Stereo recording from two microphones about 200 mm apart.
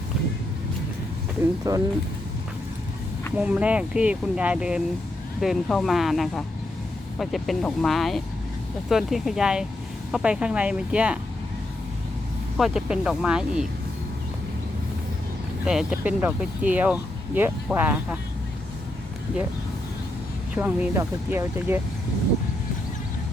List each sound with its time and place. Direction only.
1.7 s speech: 15° right (ahead or behind)
3.3 s speech: 5° right (ahead or behind)
12.5 s speech: centre (ahead or behind)
15.6 s speech: 5° right (ahead or behind)
20.6 s speech: 10° right (ahead or behind)